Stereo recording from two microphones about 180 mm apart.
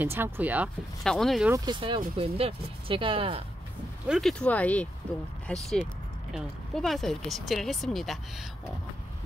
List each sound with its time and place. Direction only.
0.0 s speech: 10° right (ahead or behind)
1.0 s speech: centre (ahead or behind)
1.5 s speech: 25° right (ahead or behind)
4.1 s speech: centre (ahead or behind)